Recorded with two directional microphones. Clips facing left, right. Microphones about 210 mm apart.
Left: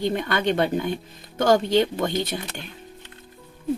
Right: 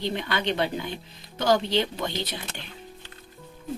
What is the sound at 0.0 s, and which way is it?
Speech, 50° left (ahead or behind).